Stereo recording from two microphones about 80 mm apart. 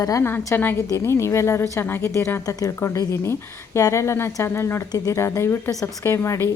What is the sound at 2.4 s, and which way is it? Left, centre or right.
A woman's voice, left.